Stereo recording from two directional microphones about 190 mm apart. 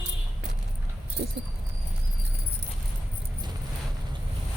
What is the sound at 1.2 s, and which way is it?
Speech, 65° right (ahead or behind).